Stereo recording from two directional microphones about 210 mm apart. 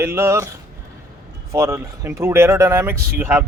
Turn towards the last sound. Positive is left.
turn(degrees=-10)  # may be behind; listen again after turning